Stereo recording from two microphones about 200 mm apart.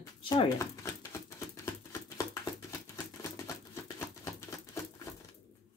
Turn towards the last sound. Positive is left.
turn(degrees=15)  # may be behind; listen again after turning